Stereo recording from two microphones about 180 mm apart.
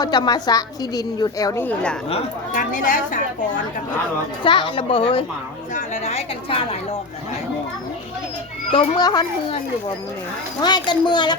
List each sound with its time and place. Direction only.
0.0 s a woman's voice: 25° left (ahead or behind); by 2.0 s 5° left (ahead or behind)
2.5 s speech: 45° left (ahead or behind)
4.4 s a woman's voice: 30° left (ahead or behind)
8.7 s a woman's voice: 25° left (ahead or behind)
10.6 s a woman's voice: 25° left (ahead or behind)